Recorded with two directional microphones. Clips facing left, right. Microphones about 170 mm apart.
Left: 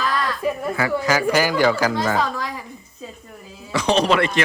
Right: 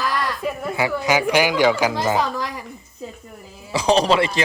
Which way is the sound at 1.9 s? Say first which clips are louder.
Right 1 dB; 20° right (ahead or behind).